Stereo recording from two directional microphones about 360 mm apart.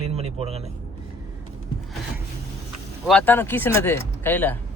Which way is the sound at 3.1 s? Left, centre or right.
Centre.